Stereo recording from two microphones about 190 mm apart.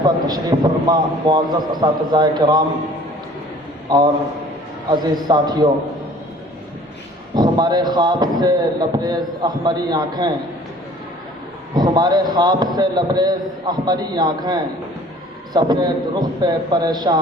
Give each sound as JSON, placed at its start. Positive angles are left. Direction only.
{"t": 0.0, "sound": "a man's voice", "side_deg": -20}
{"t": 3.8, "sound": "a man's voice", "side_deg": -20}
{"t": 7.3, "sound": "a man's voice", "side_deg": -20}
{"t": 11.7, "sound": "a man's voice", "side_deg": -20}